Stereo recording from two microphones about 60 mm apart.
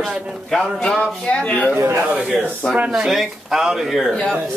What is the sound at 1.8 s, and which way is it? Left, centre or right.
Speech, right.